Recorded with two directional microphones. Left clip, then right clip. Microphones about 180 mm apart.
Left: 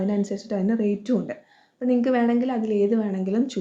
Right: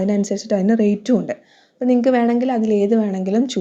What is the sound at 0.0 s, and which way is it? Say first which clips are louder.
Speech: right 6 dB; 35° right (ahead or behind).